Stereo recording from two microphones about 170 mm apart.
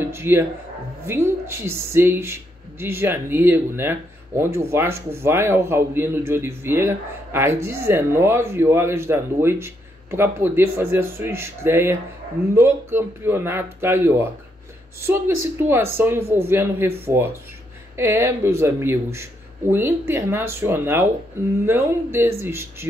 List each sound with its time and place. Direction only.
0.1 s speech: 15° right (ahead or behind)